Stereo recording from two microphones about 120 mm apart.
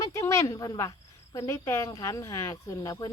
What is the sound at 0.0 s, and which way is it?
Speech, 25° left (ahead or behind).